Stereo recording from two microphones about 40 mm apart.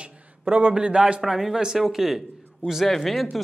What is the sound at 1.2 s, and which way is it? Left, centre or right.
Speech, centre.